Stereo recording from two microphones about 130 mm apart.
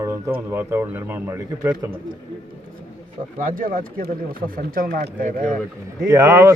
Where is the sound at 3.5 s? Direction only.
90° right.